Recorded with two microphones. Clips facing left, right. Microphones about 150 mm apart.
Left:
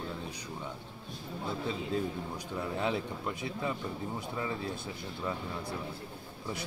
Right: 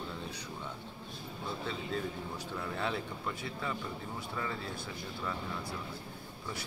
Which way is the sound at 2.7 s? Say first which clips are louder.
Left 4 dB; 15° left (ahead or behind).